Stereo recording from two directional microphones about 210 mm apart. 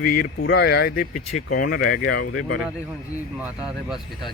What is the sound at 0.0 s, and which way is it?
Speech, 45° left (ahead or behind).